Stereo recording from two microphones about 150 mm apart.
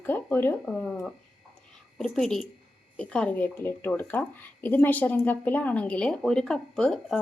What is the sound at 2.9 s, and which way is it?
A woman's voice, 10° left (ahead or behind).